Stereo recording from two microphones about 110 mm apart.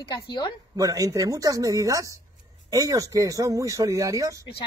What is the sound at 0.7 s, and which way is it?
Speech, 30° right (ahead or behind).